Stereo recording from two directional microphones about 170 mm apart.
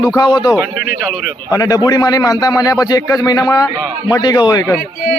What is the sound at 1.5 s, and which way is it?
Speech, 20° left (ahead or behind).